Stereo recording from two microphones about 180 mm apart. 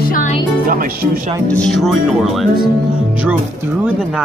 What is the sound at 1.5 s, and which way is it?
Speech, 5° left (ahead or behind).